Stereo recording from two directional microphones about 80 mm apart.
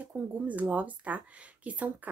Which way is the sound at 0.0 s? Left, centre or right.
Centre.